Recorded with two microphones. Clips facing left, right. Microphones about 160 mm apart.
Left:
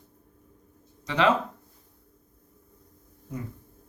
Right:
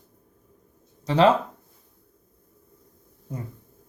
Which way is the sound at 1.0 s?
35° right (ahead or behind).